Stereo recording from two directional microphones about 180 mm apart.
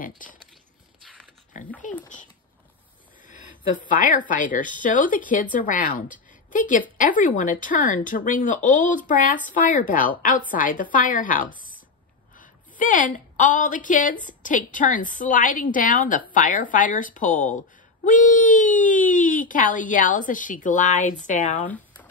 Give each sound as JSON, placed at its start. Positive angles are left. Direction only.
{"t": 1.5, "sound": "speech", "side_deg": 45}
{"t": 3.3, "sound": "a woman's voice", "side_deg": 45}
{"t": 21.6, "sound": "a sound", "side_deg": 10}